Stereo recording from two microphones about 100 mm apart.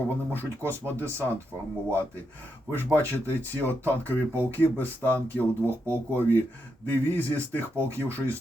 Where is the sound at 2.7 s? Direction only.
20° left (ahead or behind).